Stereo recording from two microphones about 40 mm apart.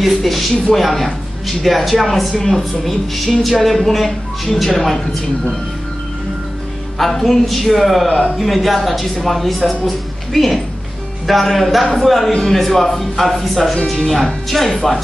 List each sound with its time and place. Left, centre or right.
0.0 s speech: centre
7.0 s a woman's voice: centre
12.3 s a man's voice: centre